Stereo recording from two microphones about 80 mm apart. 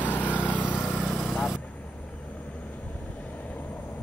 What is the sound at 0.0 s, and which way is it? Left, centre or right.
Vehicle, left.